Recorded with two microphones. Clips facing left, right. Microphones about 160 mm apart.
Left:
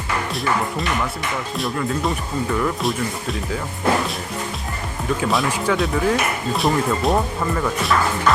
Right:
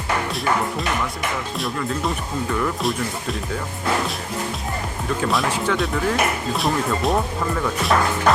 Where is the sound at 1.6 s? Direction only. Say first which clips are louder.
Left 3 dB; centre (ahead or behind).